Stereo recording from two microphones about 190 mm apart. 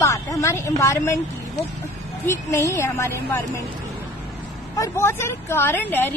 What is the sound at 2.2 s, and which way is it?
A woman's voice, 15° left (ahead or behind).